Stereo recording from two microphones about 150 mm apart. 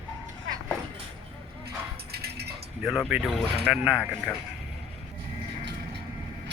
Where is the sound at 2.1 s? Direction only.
90° right.